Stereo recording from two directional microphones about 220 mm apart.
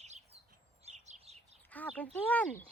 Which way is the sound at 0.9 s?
30° right (ahead or behind).